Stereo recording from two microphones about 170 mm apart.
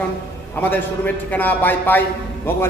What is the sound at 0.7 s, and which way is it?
A man's voice, 10° left (ahead or behind).